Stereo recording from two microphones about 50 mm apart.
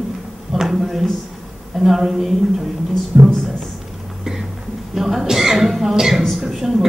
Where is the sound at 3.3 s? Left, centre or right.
Centre.